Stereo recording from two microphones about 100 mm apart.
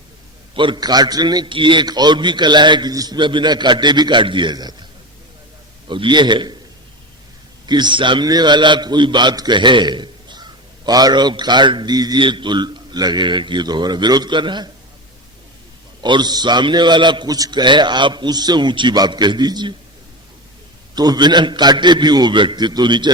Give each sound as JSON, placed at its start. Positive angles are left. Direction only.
{"t": 0.5, "sound": "a man's voice", "side_deg": -55}
{"t": 0.8, "sound": "a man's voice", "side_deg": -40}
{"t": 5.9, "sound": "a man's voice", "side_deg": -50}
{"t": 7.7, "sound": "a man's voice", "side_deg": -50}
{"t": 16.0, "sound": "a man's voice", "side_deg": -50}
{"t": 20.9, "sound": "a man's voice", "side_deg": -45}